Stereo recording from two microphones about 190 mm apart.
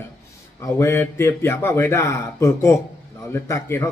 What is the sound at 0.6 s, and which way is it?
Speech, 15° left (ahead or behind).